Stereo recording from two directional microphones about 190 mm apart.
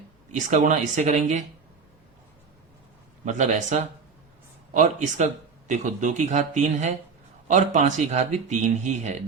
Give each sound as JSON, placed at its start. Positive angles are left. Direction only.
{"t": 0.3, "sound": "a man's voice", "side_deg": -40}
{"t": 3.2, "sound": "a man's voice", "side_deg": -40}